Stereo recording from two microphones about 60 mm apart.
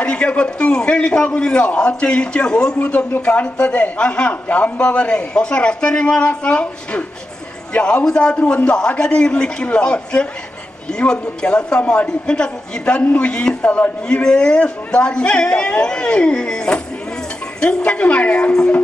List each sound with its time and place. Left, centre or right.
0.0 s a man's voice: centre
13.7 s a man's voice: left